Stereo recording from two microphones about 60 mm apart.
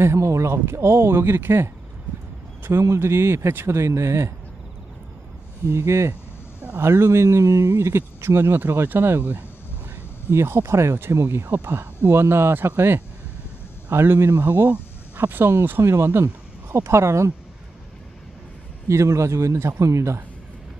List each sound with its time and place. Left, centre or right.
0.0 s speech: right
2.8 s speech: right
5.7 s speech: right
10.3 s speech: right
15.8 s speech: right
18.9 s a man's voice: right